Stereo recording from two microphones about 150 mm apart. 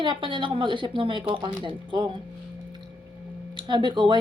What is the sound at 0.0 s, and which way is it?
Speech, 30° right (ahead or behind).